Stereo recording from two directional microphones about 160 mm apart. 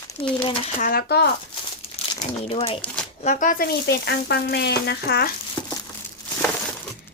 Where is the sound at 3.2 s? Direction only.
50° left (ahead or behind); by 5.3 s 90° left.